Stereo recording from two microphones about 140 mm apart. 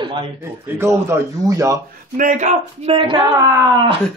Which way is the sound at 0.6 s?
15° right (ahead or behind).